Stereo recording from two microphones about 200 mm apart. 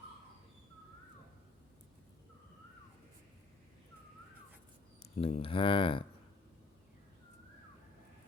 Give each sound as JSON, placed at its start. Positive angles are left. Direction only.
{"t": 5.1, "sound": "speech", "side_deg": 30}